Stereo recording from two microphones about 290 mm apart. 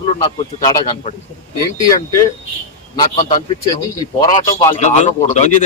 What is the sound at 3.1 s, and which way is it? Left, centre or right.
A man's voice, left.